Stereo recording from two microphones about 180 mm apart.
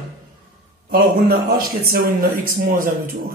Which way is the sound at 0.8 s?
55° right (ahead or behind).